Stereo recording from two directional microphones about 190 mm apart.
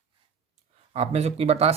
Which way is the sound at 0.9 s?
35° right (ahead or behind).